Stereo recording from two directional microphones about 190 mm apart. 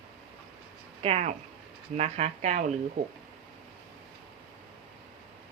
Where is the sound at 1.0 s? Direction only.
35° right (ahead or behind).